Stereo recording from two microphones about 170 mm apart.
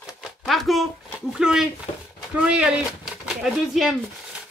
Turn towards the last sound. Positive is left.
turn(degrees=0)  # may be behind; listen again after turning